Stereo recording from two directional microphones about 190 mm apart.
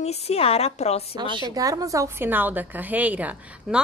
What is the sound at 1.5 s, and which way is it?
A woman's voice, 20° right (ahead or behind).